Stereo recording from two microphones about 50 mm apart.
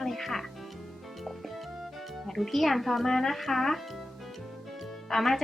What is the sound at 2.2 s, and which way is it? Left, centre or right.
Speech, centre.